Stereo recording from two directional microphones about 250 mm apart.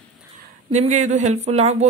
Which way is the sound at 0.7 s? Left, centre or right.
Right.